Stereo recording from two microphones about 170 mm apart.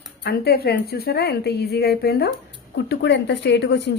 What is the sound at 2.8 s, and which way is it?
Speech, 85° left.